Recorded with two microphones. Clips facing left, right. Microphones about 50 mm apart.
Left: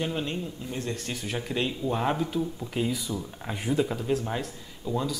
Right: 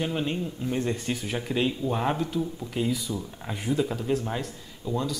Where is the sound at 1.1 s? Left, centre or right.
Centre.